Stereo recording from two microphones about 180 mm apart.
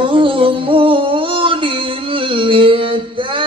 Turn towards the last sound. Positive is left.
turn(degrees=-30)  # may be behind; listen again after turning